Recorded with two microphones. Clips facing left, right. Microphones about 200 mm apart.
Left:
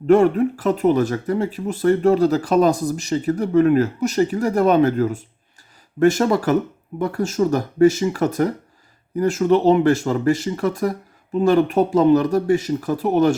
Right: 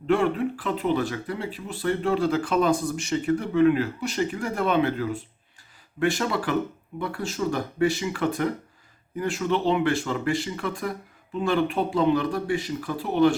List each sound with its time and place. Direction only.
0.1 s speech: 45° left (ahead or behind)